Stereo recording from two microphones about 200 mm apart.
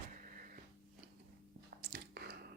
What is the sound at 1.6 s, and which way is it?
Squish, 50° right (ahead or behind).